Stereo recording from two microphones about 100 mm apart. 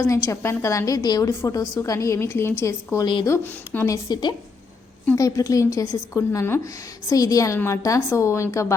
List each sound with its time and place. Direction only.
0.1 s a woman's voice: 30° left (ahead or behind)
4.1 s a woman's voice: 45° left (ahead or behind); by 8.6 s 30° left (ahead or behind)